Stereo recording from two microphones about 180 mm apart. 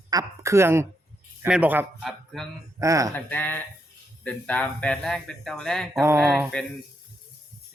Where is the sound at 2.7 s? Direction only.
20° right (ahead or behind).